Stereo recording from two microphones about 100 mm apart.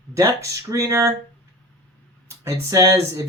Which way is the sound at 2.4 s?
35° right (ahead or behind).